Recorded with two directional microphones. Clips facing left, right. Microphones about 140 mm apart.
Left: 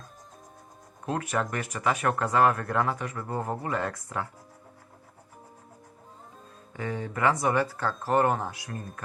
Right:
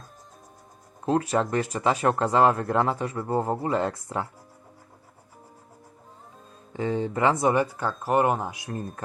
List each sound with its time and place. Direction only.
1.0 s speech: 30° right (ahead or behind)
6.7 s speech: 25° right (ahead or behind)